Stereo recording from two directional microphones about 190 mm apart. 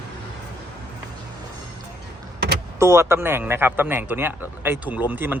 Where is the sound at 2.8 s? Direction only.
15° right (ahead or behind).